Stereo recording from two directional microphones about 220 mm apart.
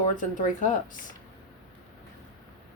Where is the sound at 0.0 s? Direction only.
35° left (ahead or behind).